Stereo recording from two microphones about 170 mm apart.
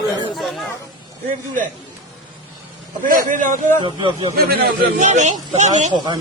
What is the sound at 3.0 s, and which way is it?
Speech, 50° right (ahead or behind).